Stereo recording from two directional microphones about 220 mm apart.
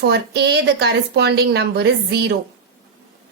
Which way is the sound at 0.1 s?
50° right (ahead or behind).